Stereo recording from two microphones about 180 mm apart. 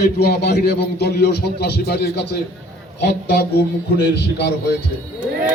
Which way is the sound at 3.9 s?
65° left (ahead or behind).